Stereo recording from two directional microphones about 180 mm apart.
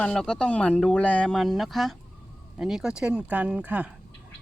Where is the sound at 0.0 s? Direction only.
5° left (ahead or behind).